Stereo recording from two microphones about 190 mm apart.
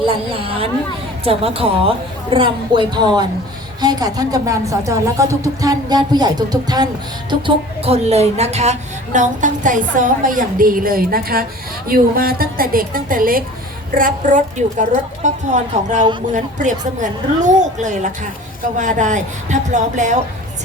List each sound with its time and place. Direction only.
0.0 s a woman's voice: 30° right (ahead or behind)